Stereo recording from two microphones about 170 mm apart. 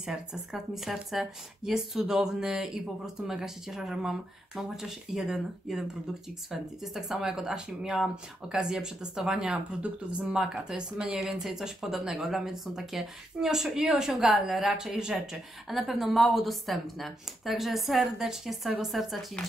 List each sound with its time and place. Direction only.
0.0 s speech: 5° right (ahead or behind)